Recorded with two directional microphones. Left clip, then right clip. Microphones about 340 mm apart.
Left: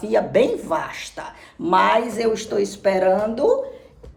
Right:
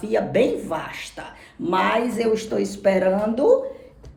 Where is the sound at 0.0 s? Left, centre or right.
Centre.